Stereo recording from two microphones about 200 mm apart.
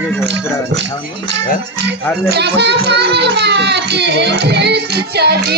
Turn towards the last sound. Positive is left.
turn(degrees=-55)  # may be behind; listen again after turning